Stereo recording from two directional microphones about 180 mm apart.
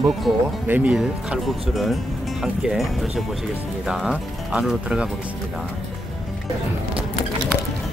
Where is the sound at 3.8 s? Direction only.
Centre (ahead or behind).